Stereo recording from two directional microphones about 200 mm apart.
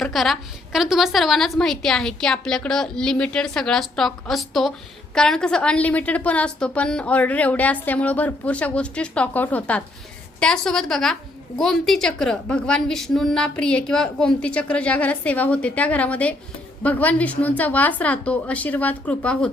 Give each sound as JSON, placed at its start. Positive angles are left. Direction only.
{"t": 0.0, "sound": "a woman's voice", "side_deg": 0}